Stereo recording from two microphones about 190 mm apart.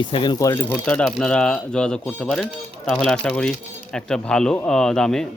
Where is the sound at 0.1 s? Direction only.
25° left (ahead or behind).